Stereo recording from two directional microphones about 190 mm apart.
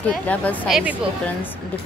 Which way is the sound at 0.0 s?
5° left (ahead or behind).